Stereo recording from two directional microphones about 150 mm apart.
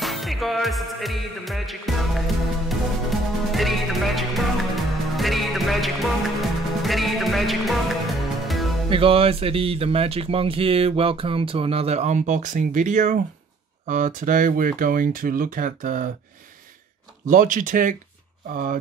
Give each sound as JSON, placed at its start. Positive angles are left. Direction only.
{"t": 0.0, "sound": "music", "side_deg": 0}
{"t": 8.9, "sound": "speech", "side_deg": -35}
{"t": 17.3, "sound": "speech", "side_deg": -60}